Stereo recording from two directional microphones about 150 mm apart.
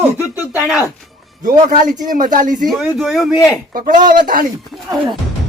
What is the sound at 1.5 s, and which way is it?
A man's voice, 65° right (ahead or behind).